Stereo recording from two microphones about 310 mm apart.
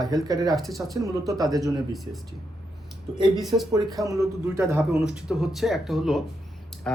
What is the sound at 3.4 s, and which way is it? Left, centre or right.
Speech, centre.